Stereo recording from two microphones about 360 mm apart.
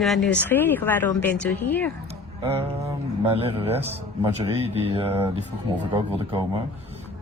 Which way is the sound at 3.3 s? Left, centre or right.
Centre.